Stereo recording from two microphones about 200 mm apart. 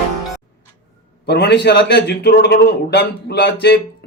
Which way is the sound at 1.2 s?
55° left (ahead or behind).